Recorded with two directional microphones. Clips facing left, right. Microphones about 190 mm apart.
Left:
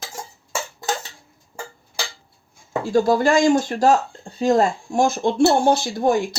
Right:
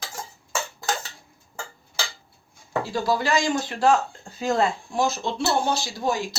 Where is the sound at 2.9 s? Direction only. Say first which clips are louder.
Left 8 dB; 50° left (ahead or behind).